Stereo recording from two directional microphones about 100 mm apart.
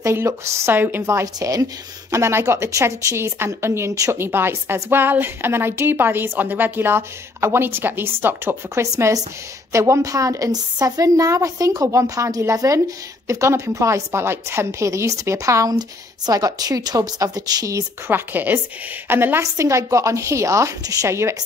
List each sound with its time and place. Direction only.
0.0 s a woman's voice: 30° right (ahead or behind)
8.9 s a woman's voice: 35° right (ahead or behind)